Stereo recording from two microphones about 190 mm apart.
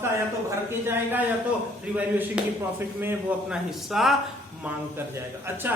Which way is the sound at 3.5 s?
Centre (ahead or behind).